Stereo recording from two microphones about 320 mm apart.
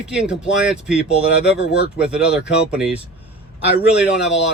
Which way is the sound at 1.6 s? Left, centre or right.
Left.